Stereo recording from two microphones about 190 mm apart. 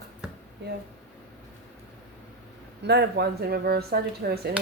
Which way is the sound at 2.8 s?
60° right (ahead or behind).